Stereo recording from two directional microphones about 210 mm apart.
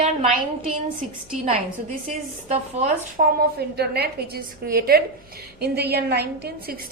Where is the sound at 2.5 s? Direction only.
30° right (ahead or behind).